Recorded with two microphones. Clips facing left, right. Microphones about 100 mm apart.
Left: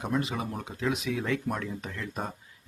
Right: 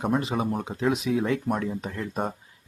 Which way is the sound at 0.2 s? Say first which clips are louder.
Right 5 dB; 30° right (ahead or behind).